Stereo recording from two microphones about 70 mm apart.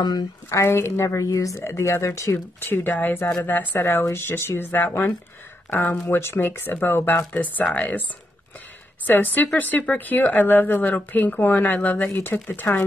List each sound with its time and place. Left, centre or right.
0.5 s a woman's voice: left
1.6 s speech: left
6.0 s speech: left
7.6 s speech: centre
9.0 s speech: left